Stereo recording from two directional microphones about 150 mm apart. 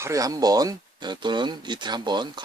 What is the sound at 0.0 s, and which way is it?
Speech, 20° right (ahead or behind).